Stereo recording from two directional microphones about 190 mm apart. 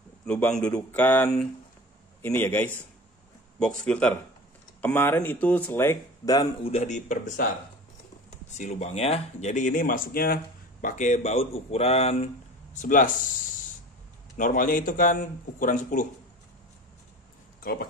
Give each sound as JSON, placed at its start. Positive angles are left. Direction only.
{"t": 0.3, "sound": "speech", "side_deg": 5}
{"t": 3.8, "sound": "speech", "side_deg": 5}
{"t": 6.7, "sound": "speech", "side_deg": 40}
{"t": 8.5, "sound": "speech", "side_deg": 40}
{"t": 12.7, "sound": "speech", "side_deg": 45}
{"t": 14.3, "sound": "speech", "side_deg": 45}
{"t": 17.6, "sound": "a sound", "side_deg": 50}